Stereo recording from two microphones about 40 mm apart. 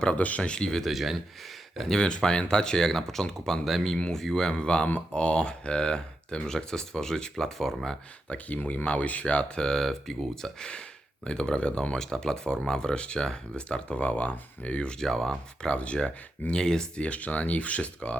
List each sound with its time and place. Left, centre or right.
0.2 s speech: left
0.5 s speech: centre
0.9 s speech: centre
2.0 s speech: left
4.5 s speech: left; by 7.9 s centre
8.3 s speech: left
9.2 s speech: left
9.6 s speech: centre; by 11.9 s left
11.9 s speech: centre; by 14.8 s left
14.8 s speech: centre
15.7 s speech: left
16.5 s speech: centre
17.0 s speech: left